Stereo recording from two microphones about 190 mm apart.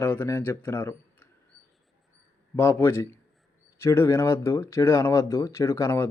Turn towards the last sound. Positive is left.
turn(degrees=15)  # may be behind; listen again after turning